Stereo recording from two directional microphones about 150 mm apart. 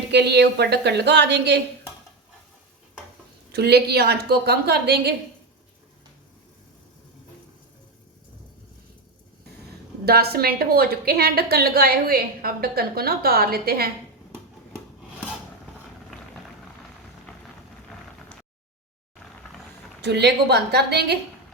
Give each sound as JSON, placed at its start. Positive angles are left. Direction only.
{"t": 0.2, "sound": "a woman's voice", "side_deg": -90}
{"t": 3.5, "sound": "a woman's voice", "side_deg": -90}
{"t": 10.1, "sound": "a woman's voice", "side_deg": -90}
{"t": 20.1, "sound": "a woman's voice", "side_deg": -90}